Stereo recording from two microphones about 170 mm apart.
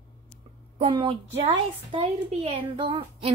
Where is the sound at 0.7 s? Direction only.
30° right (ahead or behind).